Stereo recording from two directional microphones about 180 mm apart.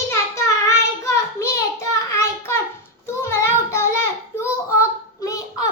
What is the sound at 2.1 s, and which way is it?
Child singing, 15° left (ahead or behind).